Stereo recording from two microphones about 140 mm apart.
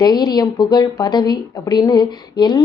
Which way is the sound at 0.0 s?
30° left (ahead or behind).